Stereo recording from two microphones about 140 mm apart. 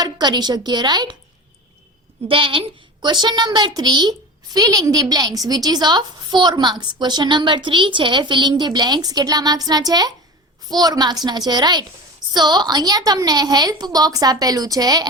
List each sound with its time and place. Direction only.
0.0 s a woman's voice: 30° right (ahead or behind)
2.2 s a woman's voice: 40° right (ahead or behind)